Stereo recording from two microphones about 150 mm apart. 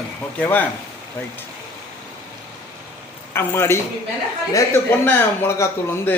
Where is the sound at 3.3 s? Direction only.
15° left (ahead or behind).